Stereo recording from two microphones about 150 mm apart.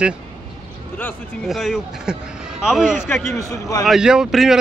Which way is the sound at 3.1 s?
15° left (ahead or behind).